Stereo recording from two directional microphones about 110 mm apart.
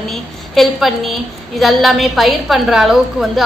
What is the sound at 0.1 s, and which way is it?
A woman's voice, centre (ahead or behind).